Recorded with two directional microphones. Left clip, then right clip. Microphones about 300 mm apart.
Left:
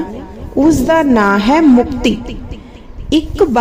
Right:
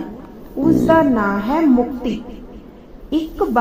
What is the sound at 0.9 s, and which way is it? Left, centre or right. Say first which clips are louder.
A woman's voice: left 4 dB; left.